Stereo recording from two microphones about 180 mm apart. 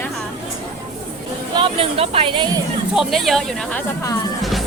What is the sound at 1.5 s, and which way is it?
Speech, 30° right (ahead or behind).